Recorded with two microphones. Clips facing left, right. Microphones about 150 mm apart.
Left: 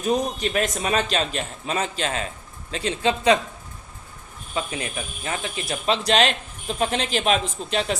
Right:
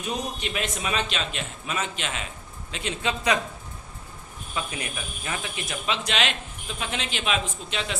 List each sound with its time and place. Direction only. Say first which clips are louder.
0.0 s speech: left 8 dB; 40° left (ahead or behind)
4.5 s speech: left 4 dB; 30° left (ahead or behind)